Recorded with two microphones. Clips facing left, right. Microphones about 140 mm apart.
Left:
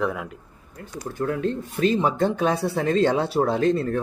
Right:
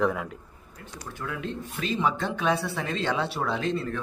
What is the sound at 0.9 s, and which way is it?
Speech, 45° left (ahead or behind).